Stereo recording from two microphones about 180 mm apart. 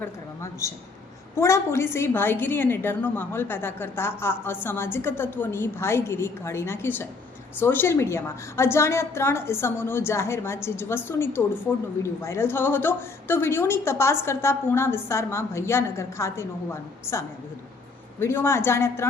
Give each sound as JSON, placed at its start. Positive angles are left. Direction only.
{"t": 1.4, "sound": "a woman's voice", "side_deg": 15}